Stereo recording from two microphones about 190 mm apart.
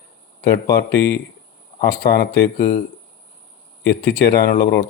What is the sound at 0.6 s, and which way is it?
Speech, 60° left (ahead or behind).